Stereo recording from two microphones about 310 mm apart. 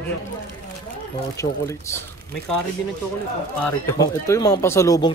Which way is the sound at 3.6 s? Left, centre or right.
Centre.